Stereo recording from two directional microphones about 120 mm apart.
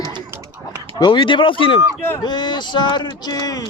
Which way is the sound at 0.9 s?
40° left (ahead or behind).